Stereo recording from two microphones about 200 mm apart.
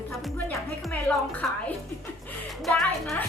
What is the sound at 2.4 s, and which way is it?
Speech, centre (ahead or behind).